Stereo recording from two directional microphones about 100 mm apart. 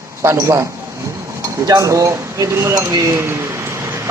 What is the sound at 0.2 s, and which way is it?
Speech, 30° right (ahead or behind).